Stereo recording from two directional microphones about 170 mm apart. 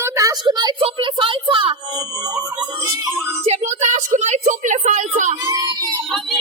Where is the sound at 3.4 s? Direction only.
40° right (ahead or behind).